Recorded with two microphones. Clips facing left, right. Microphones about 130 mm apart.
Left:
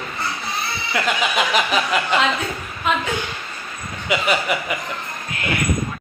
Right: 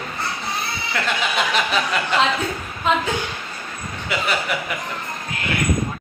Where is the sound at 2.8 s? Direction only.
35° right (ahead or behind).